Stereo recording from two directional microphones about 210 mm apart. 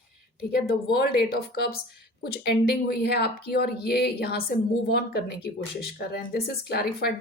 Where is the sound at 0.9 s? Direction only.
45° left (ahead or behind).